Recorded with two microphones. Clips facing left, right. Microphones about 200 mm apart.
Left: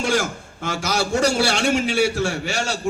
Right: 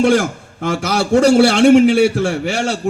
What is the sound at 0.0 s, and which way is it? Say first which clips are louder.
A man's voice: right 9 dB; 55° right (ahead or behind).